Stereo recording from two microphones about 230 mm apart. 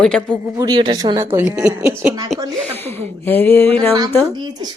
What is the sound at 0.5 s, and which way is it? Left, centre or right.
A woman's voice, centre.